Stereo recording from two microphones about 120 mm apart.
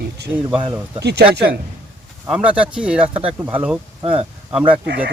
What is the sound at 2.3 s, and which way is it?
Speech, 10° right (ahead or behind).